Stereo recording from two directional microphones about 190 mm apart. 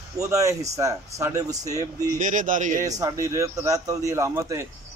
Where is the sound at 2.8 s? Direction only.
15° right (ahead or behind).